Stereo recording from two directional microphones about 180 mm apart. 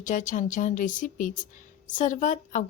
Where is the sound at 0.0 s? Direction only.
45° left (ahead or behind).